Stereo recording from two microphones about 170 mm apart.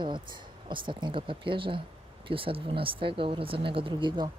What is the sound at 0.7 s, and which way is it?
Speech, 30° right (ahead or behind).